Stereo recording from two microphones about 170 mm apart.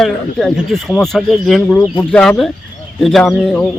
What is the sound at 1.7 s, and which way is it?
Speech, 20° left (ahead or behind).